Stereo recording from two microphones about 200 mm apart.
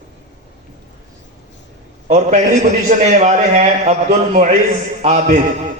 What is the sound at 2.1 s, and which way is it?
A man's voice, 35° right (ahead or behind).